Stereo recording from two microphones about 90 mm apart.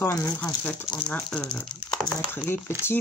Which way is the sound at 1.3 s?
5° left (ahead or behind).